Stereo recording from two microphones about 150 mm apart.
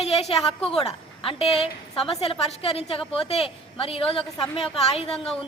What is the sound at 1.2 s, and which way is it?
A woman's voice, 40° left (ahead or behind).